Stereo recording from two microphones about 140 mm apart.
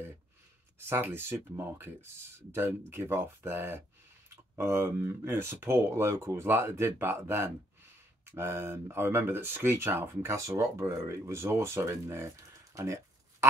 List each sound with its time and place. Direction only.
0.8 s speech: 15° right (ahead or behind)